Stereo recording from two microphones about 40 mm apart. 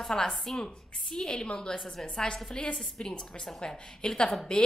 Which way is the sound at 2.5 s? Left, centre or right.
Left.